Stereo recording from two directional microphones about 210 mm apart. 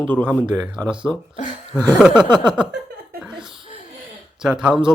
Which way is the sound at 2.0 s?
5° right (ahead or behind).